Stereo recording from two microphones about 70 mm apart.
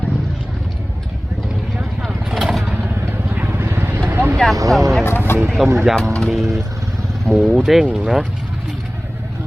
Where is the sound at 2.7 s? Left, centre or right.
Right.